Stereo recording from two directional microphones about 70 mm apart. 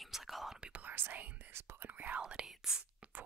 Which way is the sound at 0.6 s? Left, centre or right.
Right.